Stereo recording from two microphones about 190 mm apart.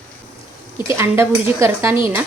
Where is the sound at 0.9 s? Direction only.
15° right (ahead or behind).